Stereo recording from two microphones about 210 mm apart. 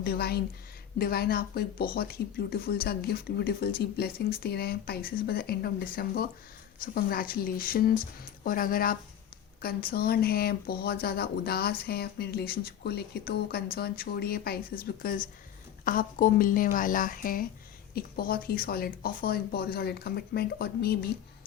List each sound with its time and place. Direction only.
0.0 s a woman's voice: 50° left (ahead or behind)